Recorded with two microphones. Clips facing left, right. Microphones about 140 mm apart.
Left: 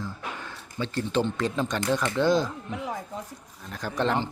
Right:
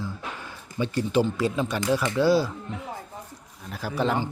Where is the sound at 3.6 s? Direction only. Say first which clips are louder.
Right 1 dB; 5° right (ahead or behind).